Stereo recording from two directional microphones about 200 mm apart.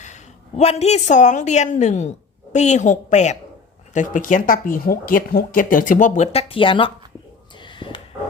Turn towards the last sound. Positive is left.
turn(degrees=25)  # may be behind; listen again after turning